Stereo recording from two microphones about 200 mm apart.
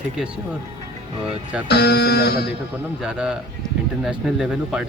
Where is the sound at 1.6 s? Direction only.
55° left (ahead or behind).